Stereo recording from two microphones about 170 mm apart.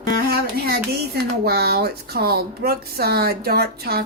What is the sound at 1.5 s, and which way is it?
A woman's voice, 70° right (ahead or behind).